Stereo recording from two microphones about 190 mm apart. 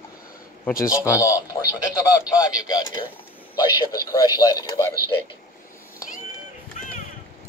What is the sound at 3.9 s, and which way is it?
Speech, 20° left (ahead or behind).